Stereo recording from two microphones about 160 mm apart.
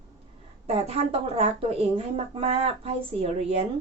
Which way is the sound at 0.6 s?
40° right (ahead or behind).